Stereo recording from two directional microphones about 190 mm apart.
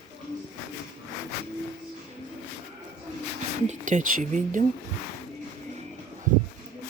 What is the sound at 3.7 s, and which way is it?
Speech, 40° right (ahead or behind).